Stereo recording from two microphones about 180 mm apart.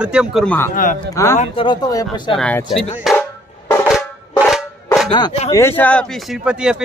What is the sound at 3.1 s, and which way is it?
Music, centre (ahead or behind).